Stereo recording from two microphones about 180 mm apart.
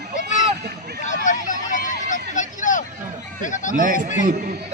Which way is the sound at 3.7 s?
45° right (ahead or behind).